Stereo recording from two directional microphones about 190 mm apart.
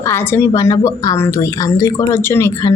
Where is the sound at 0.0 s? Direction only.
15° left (ahead or behind).